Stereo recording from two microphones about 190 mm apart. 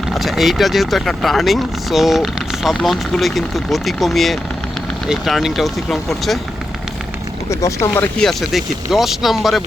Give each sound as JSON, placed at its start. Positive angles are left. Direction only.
{"t": 0.1, "sound": "speech", "side_deg": 0}
{"t": 7.5, "sound": "speech", "side_deg": 15}